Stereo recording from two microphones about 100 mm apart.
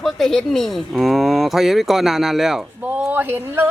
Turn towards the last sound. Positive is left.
turn(degrees=-20)  # may be behind; listen again after turning